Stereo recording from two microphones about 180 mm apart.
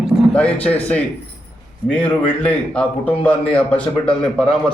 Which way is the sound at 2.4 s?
5° left (ahead or behind).